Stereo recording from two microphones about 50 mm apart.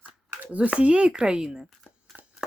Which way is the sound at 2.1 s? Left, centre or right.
Right.